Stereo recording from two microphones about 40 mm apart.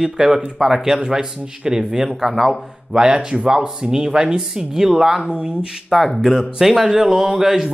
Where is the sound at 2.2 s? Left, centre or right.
Centre.